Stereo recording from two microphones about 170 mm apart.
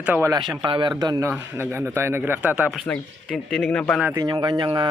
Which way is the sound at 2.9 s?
5° left (ahead or behind).